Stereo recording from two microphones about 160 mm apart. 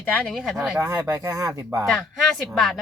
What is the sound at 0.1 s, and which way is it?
Speech, 5° left (ahead or behind).